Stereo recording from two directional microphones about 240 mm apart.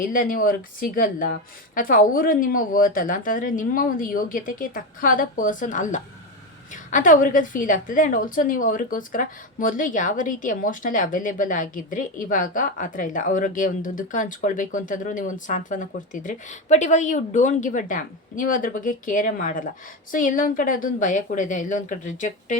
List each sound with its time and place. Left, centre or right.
0.0 s a woman's voice: left